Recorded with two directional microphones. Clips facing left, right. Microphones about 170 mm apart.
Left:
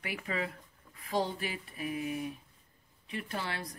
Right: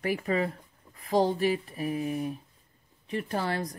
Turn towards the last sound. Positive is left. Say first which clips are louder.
# right 8 dB
turn(degrees=-45)  # may be behind; listen again after turning